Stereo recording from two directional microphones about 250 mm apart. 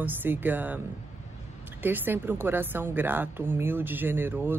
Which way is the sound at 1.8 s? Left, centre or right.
Centre.